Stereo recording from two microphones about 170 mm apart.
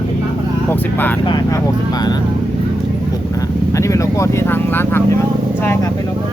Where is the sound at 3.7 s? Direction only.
20° left (ahead or behind).